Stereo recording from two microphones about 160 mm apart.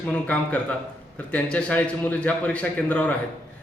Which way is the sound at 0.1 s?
10° left (ahead or behind).